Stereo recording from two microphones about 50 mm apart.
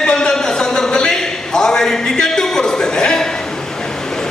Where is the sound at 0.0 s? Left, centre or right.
Centre.